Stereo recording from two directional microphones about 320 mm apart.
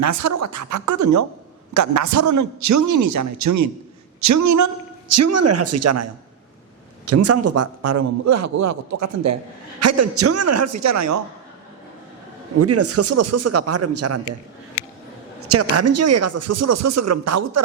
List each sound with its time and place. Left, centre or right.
0.0 s a man's voice: right
12.5 s a man's voice: right
15.4 s a man's voice: right